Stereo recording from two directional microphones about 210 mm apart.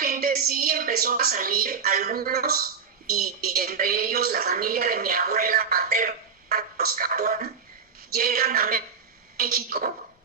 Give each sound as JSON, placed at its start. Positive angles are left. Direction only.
{"t": 0.0, "sound": "a woman's voice", "side_deg": -45}